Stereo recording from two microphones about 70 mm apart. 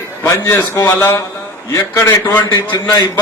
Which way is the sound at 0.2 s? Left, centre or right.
Left.